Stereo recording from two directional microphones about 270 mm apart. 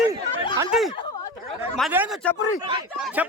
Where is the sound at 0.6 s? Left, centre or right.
Centre.